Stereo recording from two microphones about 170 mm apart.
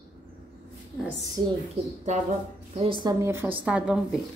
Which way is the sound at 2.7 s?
30° right (ahead or behind).